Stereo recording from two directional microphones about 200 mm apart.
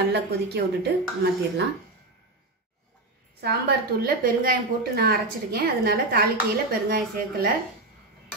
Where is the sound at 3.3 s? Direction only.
50° right (ahead or behind).